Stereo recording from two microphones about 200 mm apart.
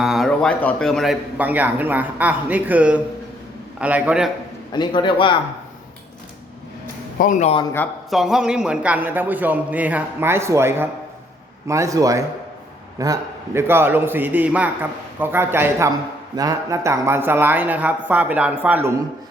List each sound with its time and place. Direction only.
0.0 s a man's voice: centre (ahead or behind)
4.7 s a man's voice: 20° left (ahead or behind)
7.2 s speech: 40° left (ahead or behind)
7.6 s speech: 10° left (ahead or behind)
8.1 s a man's voice: centre (ahead or behind)